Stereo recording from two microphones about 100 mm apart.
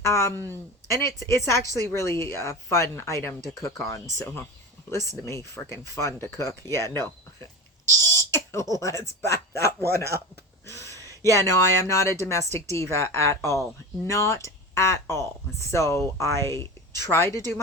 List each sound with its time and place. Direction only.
0.0 s speech: 30° left (ahead or behind)
5.9 s speech: 30° left (ahead or behind)
8.1 s a sound: 30° left (ahead or behind)
8.7 s speech: 30° left (ahead or behind)
10.0 s speech: 25° right (ahead or behind)
10.7 s a sound: 30° left (ahead or behind)
11.3 s speech: 30° left (ahead or behind)